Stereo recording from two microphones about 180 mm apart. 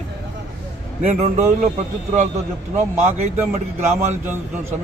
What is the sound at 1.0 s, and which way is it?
Speech, 35° right (ahead or behind).